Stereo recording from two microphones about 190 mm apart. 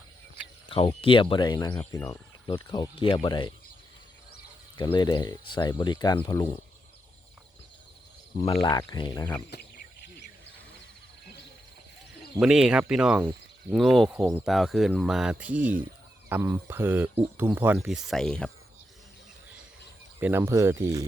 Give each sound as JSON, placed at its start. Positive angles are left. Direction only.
{"t": 0.7, "sound": "speech", "side_deg": 30}
{"t": 4.8, "sound": "speech", "side_deg": 25}
{"t": 8.6, "sound": "speech", "side_deg": 20}
{"t": 9.5, "sound": "a sound", "side_deg": 55}
{"t": 12.4, "sound": "speech", "side_deg": -5}
{"t": 20.1, "sound": "speech", "side_deg": -10}